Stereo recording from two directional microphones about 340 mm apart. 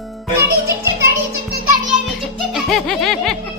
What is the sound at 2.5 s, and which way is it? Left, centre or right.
Music, centre.